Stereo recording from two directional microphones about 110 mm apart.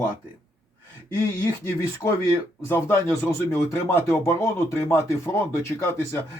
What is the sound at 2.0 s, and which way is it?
Speech, 20° left (ahead or behind).